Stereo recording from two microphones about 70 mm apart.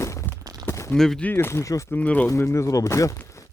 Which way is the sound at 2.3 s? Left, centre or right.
Left.